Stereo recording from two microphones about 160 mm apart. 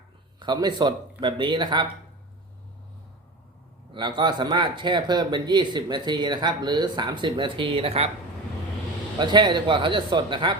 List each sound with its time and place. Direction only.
0.3 s a man's voice: 25° right (ahead or behind)
3.9 s speech: 25° right (ahead or behind)
9.1 s speech: 30° right (ahead or behind)